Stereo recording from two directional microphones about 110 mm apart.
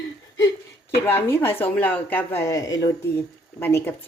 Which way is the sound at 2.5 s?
30° left (ahead or behind).